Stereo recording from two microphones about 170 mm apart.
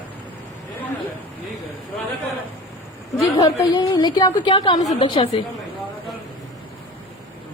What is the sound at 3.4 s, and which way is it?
A woman's voice, 25° left (ahead or behind).